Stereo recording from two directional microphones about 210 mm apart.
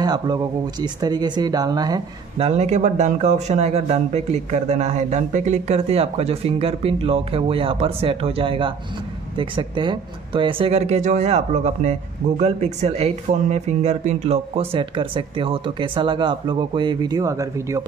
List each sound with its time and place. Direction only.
0.0 s speech: 20° right (ahead or behind)